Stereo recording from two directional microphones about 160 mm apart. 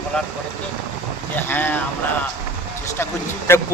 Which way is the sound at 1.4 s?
10° left (ahead or behind).